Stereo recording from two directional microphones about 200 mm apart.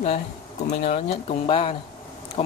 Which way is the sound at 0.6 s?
35° left (ahead or behind).